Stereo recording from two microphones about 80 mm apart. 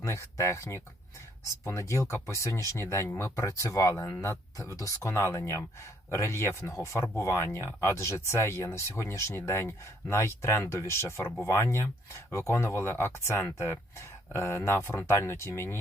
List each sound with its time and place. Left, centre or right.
0.0 s speech: left